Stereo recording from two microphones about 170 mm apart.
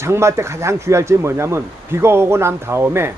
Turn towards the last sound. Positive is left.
turn(degrees=-15)  # may be behind; listen again after turning